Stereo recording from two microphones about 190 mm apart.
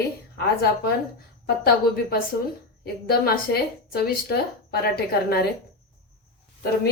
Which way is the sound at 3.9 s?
55° left (ahead or behind).